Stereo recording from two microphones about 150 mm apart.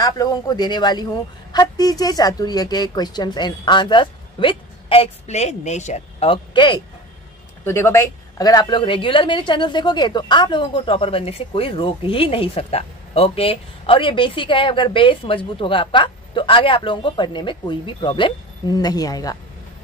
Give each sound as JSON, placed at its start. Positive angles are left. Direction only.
{"t": 0.0, "sound": "a man's voice", "side_deg": 25}
{"t": 7.6, "sound": "a woman's voice", "side_deg": 15}